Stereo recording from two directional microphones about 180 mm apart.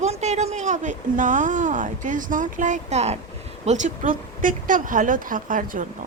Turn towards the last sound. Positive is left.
turn(degrees=-50)  # may be behind; listen again after turning